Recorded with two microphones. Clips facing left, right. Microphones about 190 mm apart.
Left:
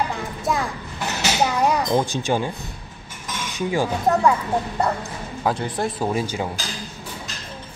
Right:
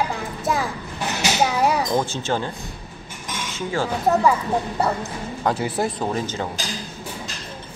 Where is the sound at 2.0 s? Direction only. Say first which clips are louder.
Left 2 dB; 15° left (ahead or behind).